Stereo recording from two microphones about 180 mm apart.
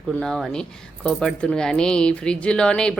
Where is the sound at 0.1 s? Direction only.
Centre (ahead or behind).